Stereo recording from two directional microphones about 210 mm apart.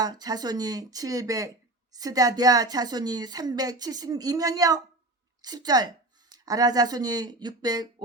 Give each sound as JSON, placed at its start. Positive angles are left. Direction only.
{"t": 0.0, "sound": "a woman's voice", "side_deg": -20}